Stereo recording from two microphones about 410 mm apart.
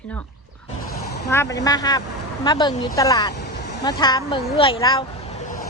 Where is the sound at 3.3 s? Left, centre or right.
Left.